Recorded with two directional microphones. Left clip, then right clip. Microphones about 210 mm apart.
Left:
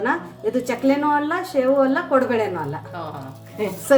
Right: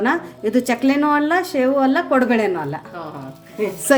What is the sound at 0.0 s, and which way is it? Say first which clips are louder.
Speech: right 3 dB; 50° right (ahead or behind).